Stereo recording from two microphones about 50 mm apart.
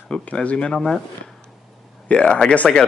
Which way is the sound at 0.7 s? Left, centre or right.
Centre.